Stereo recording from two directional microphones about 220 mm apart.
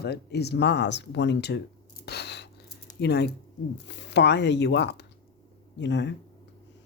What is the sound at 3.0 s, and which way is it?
Speech, 50° left (ahead or behind).